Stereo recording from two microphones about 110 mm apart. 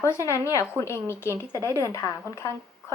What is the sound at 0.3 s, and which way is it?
A woman's voice, 25° left (ahead or behind).